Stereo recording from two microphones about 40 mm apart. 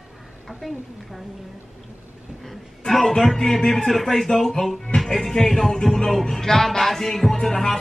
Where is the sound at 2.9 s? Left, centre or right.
Centre.